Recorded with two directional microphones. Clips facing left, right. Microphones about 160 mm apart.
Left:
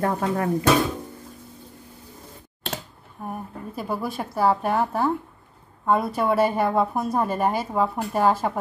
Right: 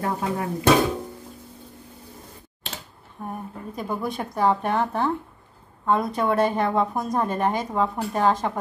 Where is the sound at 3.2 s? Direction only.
5° left (ahead or behind).